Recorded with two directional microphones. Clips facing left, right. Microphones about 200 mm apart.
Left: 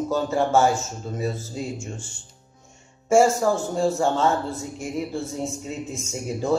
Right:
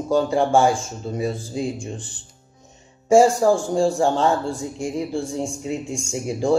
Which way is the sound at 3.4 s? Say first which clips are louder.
Right 4 dB; 5° right (ahead or behind).